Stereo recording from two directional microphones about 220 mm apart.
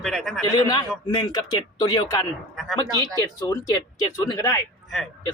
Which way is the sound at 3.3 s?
15° left (ahead or behind).